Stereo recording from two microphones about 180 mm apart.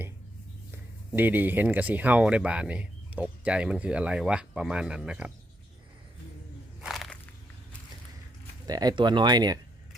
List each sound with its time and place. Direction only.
1.1 s speech: 10° right (ahead or behind)
6.8 s walk: centre (ahead or behind)
8.6 s speech: 20° right (ahead or behind)